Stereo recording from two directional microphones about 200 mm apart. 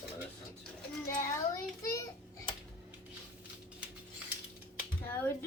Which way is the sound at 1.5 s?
15° left (ahead or behind).